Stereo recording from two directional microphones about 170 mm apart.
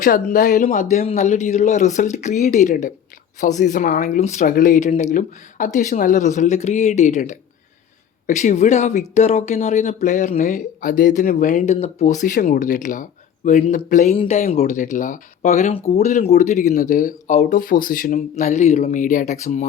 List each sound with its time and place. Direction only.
0.0 s speech: 50° left (ahead or behind)
14.6 s speech: 50° left (ahead or behind)